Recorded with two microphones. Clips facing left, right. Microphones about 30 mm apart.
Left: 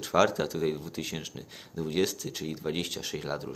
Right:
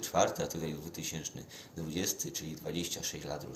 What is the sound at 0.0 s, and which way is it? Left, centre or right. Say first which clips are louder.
Speech: left 5 dB; left.